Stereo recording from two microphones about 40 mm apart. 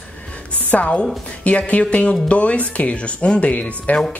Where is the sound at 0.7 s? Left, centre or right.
Left.